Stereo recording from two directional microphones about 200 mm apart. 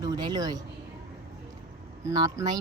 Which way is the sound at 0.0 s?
20° right (ahead or behind).